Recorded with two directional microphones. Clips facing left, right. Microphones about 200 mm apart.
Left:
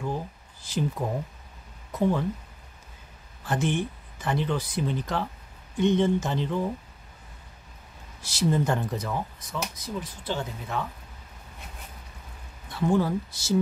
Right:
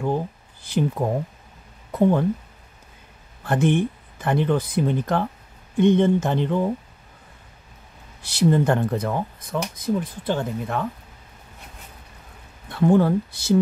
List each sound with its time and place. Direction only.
0.0 s a sound: 60° right (ahead or behind)
1.9 s speech: 55° right (ahead or behind)
3.4 s speech: 55° right (ahead or behind)
8.3 s speech: 60° right (ahead or behind)
12.7 s speech: 55° right (ahead or behind)